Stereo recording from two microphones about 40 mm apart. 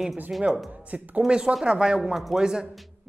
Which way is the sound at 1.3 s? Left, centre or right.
Right.